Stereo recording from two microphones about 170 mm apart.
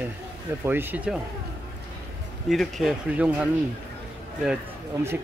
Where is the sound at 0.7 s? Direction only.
10° right (ahead or behind).